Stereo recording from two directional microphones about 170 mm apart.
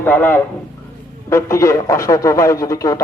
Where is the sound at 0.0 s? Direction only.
10° left (ahead or behind).